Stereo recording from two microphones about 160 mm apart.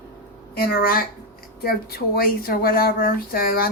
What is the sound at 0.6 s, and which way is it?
Speech, 65° left (ahead or behind).